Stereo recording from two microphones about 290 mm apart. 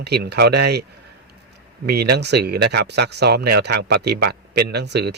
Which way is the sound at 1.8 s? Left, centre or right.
Right.